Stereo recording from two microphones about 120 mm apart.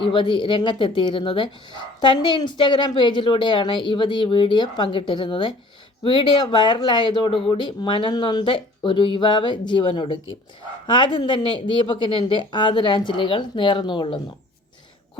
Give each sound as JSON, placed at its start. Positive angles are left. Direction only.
{"t": 0.0, "sound": "a woman's voice", "side_deg": 40}